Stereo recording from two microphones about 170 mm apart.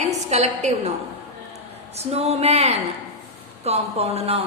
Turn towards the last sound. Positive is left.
turn(degrees=-35)  # may be behind; listen again after turning